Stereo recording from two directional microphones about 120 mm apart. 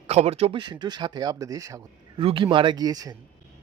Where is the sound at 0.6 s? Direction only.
35° right (ahead or behind).